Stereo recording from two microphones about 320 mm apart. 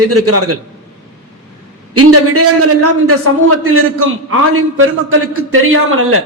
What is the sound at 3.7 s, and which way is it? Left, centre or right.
A man's voice, right.